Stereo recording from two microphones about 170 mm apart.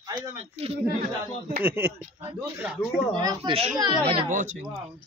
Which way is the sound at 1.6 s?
15° right (ahead or behind).